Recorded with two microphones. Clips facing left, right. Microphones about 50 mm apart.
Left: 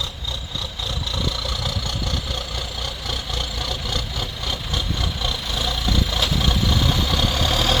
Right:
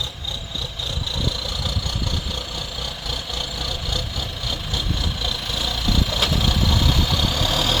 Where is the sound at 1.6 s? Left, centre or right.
Centre.